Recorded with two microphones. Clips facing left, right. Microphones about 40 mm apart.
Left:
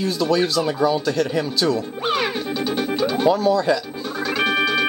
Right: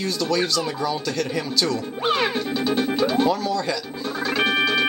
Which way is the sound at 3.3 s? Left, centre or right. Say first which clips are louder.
Left 6 dB; centre.